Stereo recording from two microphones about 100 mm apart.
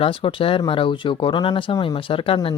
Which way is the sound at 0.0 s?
65° left (ahead or behind).